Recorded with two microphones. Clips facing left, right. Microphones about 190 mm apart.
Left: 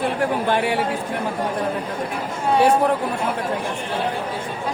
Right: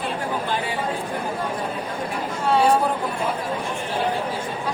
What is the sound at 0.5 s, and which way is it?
Speech, 65° left (ahead or behind).